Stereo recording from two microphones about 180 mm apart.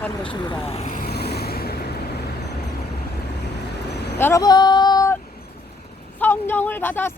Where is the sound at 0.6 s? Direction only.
35° left (ahead or behind); by 2.0 s 60° left (ahead or behind).